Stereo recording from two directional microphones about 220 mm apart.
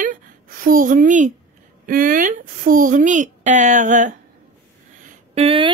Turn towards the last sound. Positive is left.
turn(degrees=-25)  # may be behind; listen again after turning